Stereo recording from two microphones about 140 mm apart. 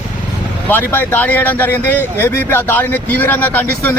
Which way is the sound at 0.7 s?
15° left (ahead or behind).